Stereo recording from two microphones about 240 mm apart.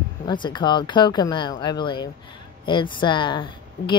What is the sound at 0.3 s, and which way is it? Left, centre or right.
Speech, centre.